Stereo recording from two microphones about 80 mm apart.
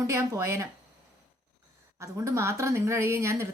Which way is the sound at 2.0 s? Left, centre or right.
Right.